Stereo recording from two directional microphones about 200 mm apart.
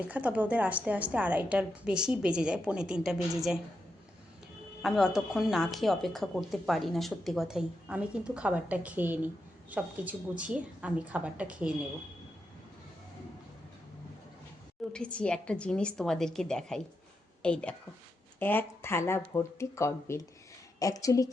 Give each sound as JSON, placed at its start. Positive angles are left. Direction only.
{"t": 0.0, "sound": "speech", "side_deg": -5}
{"t": 4.8, "sound": "speech", "side_deg": 0}
{"t": 14.9, "sound": "speech", "side_deg": 5}